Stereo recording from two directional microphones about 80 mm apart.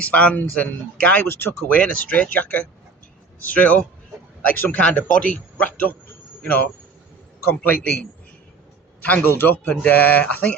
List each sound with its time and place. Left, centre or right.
0.0 s speech: centre
1.3 s speech: left
1.8 s speech: centre
9.0 s speech: left